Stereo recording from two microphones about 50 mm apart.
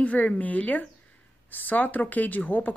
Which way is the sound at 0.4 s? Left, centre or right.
Left.